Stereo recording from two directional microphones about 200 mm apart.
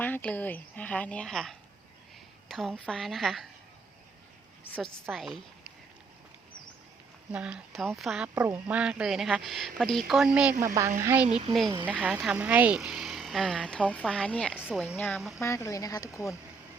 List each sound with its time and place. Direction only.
0.0 s a woman's voice: 5° left (ahead or behind)
5.1 s speech: centre (ahead or behind)
7.3 s a woman's voice: 5° right (ahead or behind)
11.3 s speech: 30° right (ahead or behind)
11.9 s speech: 5° right (ahead or behind)
14.6 s speech: 5° right (ahead or behind)
14.9 s a woman's voice: 10° left (ahead or behind)
15.4 s a woman's voice: 15° left (ahead or behind)